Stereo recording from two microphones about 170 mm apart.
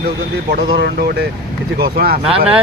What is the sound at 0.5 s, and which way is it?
Speech, 75° right (ahead or behind).